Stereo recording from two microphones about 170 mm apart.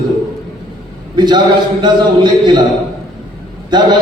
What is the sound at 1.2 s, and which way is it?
A man's voice, 25° right (ahead or behind).